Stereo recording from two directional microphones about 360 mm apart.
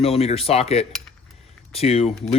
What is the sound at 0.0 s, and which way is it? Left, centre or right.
Speech, centre.